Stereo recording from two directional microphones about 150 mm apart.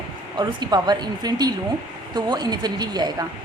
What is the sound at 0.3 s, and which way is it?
A woman's voice, 30° right (ahead or behind).